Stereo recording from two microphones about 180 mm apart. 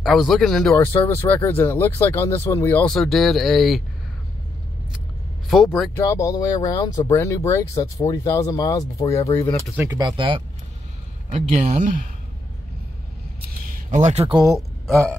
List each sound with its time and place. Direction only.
0.0 s speech: centre (ahead or behind)
0.7 s speech: 15° left (ahead or behind)
5.5 s speech: centre (ahead or behind)
5.9 s speech: 15° left (ahead or behind)
9.8 s speech: 20° right (ahead or behind)
11.3 s speech: 40° right (ahead or behind)
13.4 s a sound: 45° right (ahead or behind)